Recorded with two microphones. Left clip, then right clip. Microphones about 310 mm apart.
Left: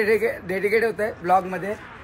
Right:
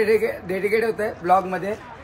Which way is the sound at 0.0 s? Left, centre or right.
Centre.